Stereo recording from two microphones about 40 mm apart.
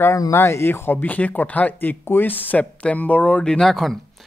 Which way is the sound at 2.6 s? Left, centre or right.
Left.